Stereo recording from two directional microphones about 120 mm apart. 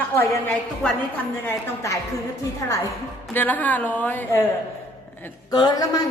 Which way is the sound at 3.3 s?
15° left (ahead or behind).